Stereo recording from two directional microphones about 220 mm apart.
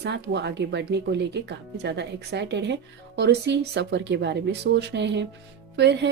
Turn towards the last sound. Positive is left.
turn(degrees=-50)  # may be behind; listen again after turning